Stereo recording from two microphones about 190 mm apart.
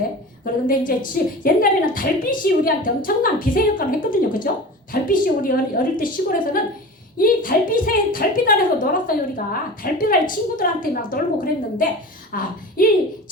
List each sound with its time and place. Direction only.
0.7 s a woman's voice: 45° left (ahead or behind)